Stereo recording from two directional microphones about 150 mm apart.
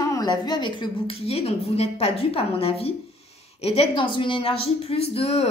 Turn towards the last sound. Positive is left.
turn(degrees=40)  # may be behind; listen again after turning